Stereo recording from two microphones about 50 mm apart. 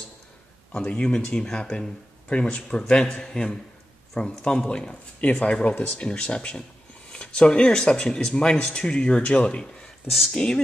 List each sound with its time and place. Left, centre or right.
0.8 s speech: centre